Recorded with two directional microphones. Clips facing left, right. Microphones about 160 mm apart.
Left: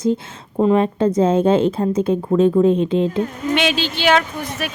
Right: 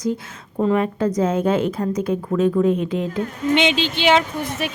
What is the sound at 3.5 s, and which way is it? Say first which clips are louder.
Speech: right 3 dB; 20° right (ahead or behind).